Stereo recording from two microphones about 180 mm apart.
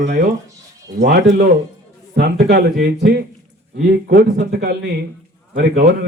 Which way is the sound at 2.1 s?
60° right (ahead or behind).